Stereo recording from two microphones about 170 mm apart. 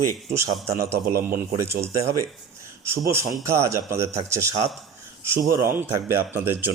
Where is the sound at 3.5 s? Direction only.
15° right (ahead or behind).